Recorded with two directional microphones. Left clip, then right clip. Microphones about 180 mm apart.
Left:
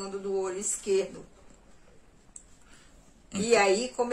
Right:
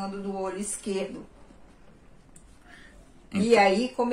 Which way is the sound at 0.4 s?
15° left (ahead or behind).